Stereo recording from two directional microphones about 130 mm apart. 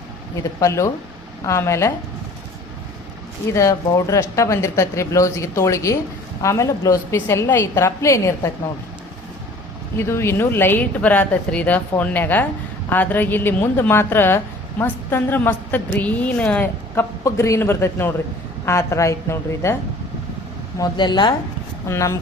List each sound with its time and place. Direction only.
0.3 s speech: 25° left (ahead or behind)
3.5 s speech: 25° left (ahead or behind)
10.0 s a woman's voice: 20° left (ahead or behind)
20.7 s speech: 30° left (ahead or behind)
21.8 s speech: 25° left (ahead or behind)